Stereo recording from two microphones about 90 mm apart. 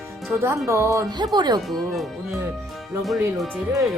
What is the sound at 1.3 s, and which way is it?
Speech, 50° right (ahead or behind).